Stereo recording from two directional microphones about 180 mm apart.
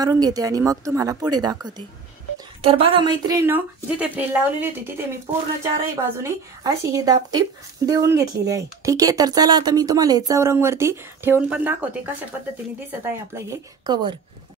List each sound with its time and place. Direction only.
0.0 s a woman's voice: 20° right (ahead or behind)
13.3 s a woman's voice: 20° right (ahead or behind)